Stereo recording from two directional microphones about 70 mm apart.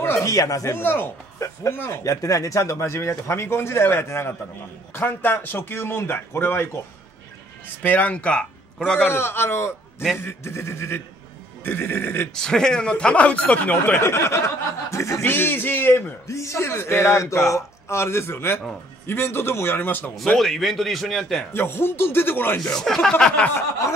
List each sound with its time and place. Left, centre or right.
0.2 s speech: left
0.7 s speech: left
2.0 s speech: left
7.8 s a man's voice: left
9.1 s speech: left
12.4 s speech: centre
14.0 s speech: left
15.2 s speech: left
16.3 s speech: left
20.3 s a man's voice: centre
21.5 s speech: left
22.6 s speech: centre